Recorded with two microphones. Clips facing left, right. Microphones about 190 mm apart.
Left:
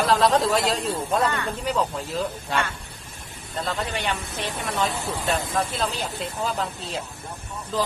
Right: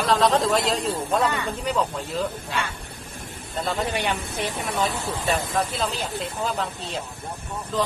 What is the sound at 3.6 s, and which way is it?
A woman's voice, 10° right (ahead or behind).